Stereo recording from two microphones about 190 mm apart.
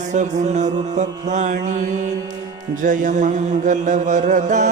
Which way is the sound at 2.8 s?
40° right (ahead or behind).